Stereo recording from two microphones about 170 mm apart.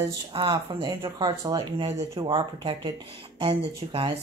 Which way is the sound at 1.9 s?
35° right (ahead or behind).